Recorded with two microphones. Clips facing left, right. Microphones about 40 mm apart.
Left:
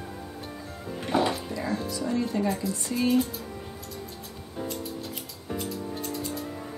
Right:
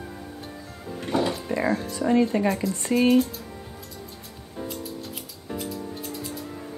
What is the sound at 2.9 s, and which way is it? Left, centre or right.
Speech, right.